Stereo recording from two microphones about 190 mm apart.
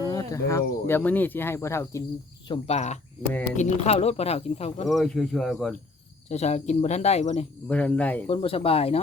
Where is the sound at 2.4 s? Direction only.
30° left (ahead or behind).